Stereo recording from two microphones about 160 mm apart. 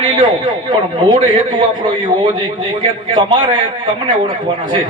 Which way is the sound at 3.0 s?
30° right (ahead or behind).